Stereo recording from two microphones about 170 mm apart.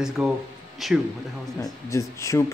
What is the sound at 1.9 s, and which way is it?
Speech, 20° left (ahead or behind).